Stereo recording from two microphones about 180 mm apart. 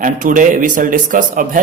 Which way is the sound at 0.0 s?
45° right (ahead or behind).